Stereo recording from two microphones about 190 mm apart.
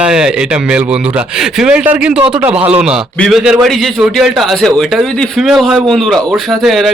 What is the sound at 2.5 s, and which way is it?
Speech, 30° right (ahead or behind).